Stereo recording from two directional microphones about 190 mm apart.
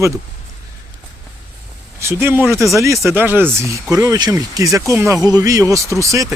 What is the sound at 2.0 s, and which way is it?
Speech, 15° right (ahead or behind).